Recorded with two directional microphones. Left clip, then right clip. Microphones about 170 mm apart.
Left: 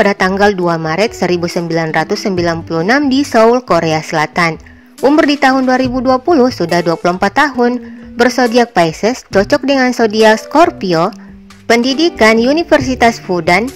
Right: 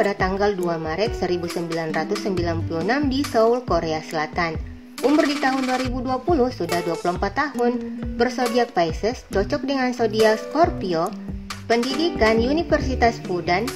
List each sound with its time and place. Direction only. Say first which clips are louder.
0.0 s a woman's voice: left 10 dB; 45° left (ahead or behind)